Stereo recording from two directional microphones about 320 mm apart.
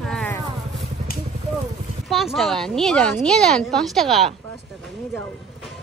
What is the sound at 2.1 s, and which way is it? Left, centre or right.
A woman's voice, centre.